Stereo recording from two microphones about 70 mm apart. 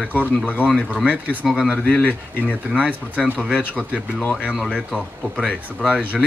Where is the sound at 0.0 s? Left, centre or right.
Right.